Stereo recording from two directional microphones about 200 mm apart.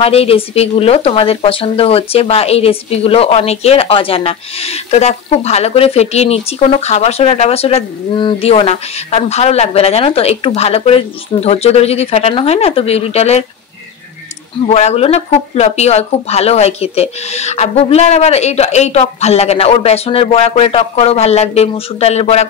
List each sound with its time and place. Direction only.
0.0 s speech: 30° left (ahead or behind)
14.7 s speech: 30° left (ahead or behind)